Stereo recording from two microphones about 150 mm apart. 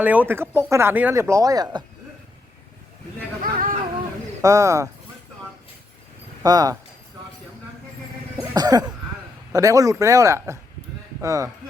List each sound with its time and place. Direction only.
0.0 s speech: 10° right (ahead or behind)
3.4 s a sound: 65° right (ahead or behind)
4.4 s speech: 20° right (ahead or behind)
6.4 s speech: 25° right (ahead or behind)
8.4 s a sound: 25° right (ahead or behind)
9.5 s speech: 20° right (ahead or behind)